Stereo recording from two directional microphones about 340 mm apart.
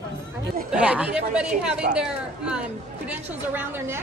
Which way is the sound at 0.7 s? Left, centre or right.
Centre.